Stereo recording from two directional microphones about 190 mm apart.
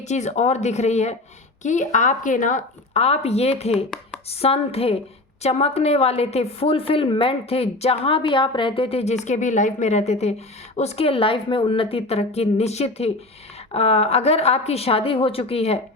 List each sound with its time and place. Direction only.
0.0 s a woman's voice: 35° left (ahead or behind)